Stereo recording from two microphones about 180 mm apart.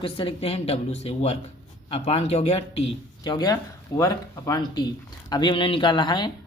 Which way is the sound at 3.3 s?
25° left (ahead or behind).